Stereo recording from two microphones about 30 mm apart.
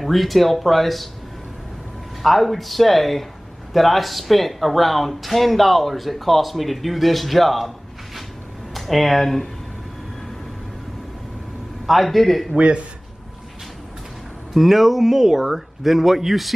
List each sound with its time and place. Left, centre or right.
0.0 s speech: centre
2.2 s speech: centre
8.7 s speech: centre
11.8 s speech: centre
12.5 s speech: right
14.5 s speech: centre